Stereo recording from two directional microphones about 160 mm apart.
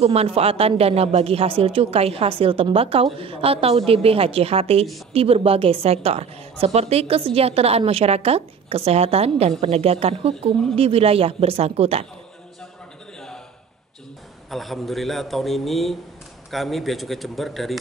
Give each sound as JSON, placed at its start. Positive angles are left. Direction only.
{"t": 0.0, "sound": "a woman's voice", "side_deg": -40}
{"t": 14.5, "sound": "a man's voice", "side_deg": 0}